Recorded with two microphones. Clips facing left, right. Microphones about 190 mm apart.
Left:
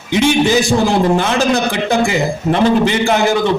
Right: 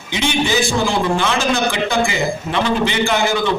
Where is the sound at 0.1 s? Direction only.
45° left (ahead or behind).